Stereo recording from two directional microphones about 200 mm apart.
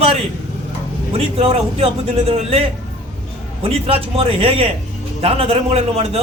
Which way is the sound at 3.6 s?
30° right (ahead or behind).